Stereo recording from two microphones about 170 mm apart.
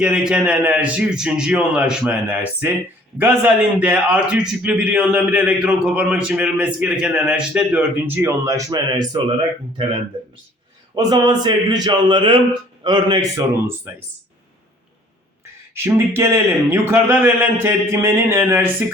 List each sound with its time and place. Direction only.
0.0 s a man's voice: 5° right (ahead or behind); by 13.4 s 25° right (ahead or behind)
15.7 s a man's voice: 15° right (ahead or behind)